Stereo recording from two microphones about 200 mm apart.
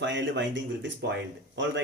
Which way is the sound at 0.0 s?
65° right (ahead or behind).